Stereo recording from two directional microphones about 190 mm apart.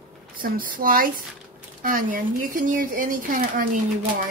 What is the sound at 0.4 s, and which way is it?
Speech, 45° right (ahead or behind).